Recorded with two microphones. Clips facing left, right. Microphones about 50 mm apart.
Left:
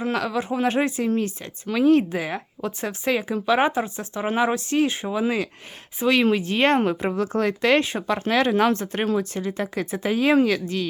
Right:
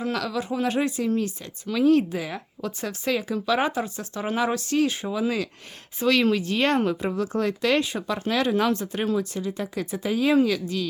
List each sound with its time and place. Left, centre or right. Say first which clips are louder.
0.0 s a woman's voice: left 3 dB; left